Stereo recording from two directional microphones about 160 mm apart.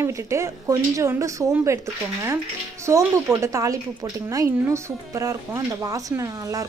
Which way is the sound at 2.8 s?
15° right (ahead or behind).